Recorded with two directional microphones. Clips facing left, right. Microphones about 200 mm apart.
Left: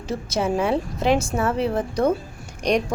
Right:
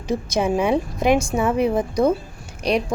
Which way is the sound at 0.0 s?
15° right (ahead or behind).